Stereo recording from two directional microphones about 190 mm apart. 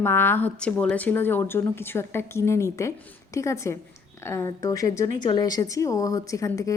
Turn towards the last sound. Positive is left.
turn(degrees=15)  # may be behind; listen again after turning